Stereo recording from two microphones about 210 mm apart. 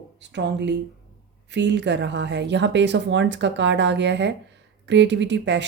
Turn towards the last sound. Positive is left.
turn(degrees=-55)  # may be behind; listen again after turning